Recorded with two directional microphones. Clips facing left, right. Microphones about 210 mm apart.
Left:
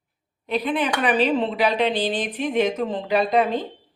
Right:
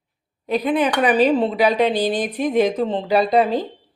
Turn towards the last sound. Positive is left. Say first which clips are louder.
# right 3 dB
turn(degrees=-35)  # may be behind; listen again after turning